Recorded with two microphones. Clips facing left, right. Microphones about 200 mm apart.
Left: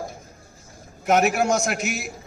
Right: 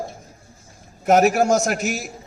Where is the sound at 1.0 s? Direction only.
40° right (ahead or behind).